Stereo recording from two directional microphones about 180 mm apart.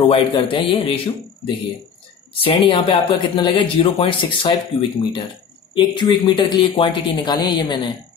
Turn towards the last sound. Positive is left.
turn(degrees=25)  # may be behind; listen again after turning